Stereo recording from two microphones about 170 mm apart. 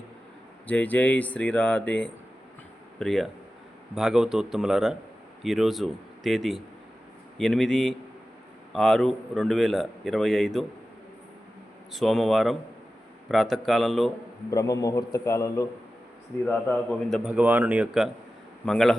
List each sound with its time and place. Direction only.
0.7 s a man's voice: 10° left (ahead or behind)
11.9 s a man's voice: centre (ahead or behind)
14.5 s a man's voice: 20° left (ahead or behind); by 18.9 s 5° left (ahead or behind)